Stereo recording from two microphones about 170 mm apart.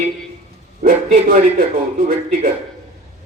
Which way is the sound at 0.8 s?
55° right (ahead or behind).